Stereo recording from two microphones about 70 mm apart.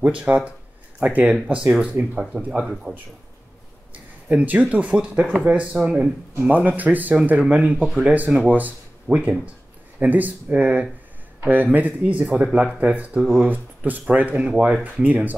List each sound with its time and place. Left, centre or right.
0.0 s speech: right
0.5 s a sound: right
1.9 s speech: centre
13.5 s speech: right